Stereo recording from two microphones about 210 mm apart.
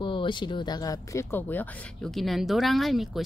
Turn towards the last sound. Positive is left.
turn(degrees=0)  # may be behind; listen again after turning